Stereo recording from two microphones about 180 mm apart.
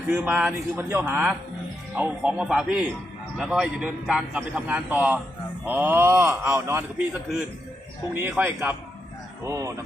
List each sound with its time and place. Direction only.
0.1 s a man's voice: 10° right (ahead or behind)